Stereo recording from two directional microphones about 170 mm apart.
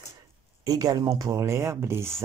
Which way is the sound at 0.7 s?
20° right (ahead or behind).